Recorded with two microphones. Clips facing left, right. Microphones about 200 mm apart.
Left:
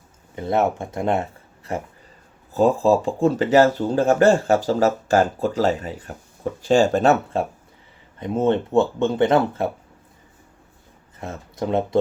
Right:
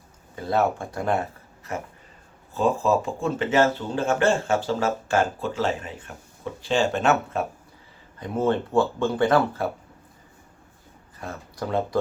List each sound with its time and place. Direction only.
0.3 s speech: 20° left (ahead or behind)
8.2 s speech: 20° left (ahead or behind)
11.2 s speech: 25° left (ahead or behind)